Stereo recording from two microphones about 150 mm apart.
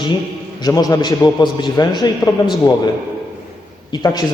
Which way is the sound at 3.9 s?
25° left (ahead or behind).